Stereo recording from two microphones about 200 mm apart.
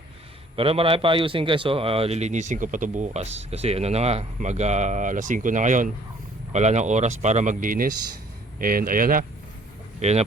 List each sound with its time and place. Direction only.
0.5 s speech: 30° right (ahead or behind); by 9.2 s 45° right (ahead or behind)
10.0 s speech: 35° right (ahead or behind)